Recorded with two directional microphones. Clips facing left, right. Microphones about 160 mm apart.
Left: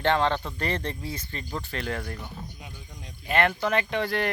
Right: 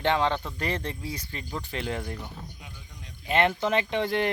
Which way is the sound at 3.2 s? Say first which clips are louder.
Even; 20° right (ahead or behind).